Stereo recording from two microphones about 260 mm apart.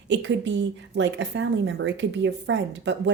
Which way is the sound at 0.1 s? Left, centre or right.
Right.